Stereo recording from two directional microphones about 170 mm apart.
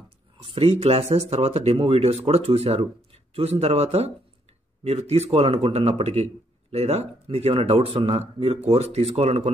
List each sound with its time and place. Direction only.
0.4 s speech: 35° right (ahead or behind)